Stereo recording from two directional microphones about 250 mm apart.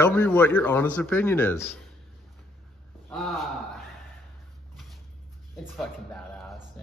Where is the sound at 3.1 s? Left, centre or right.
Centre.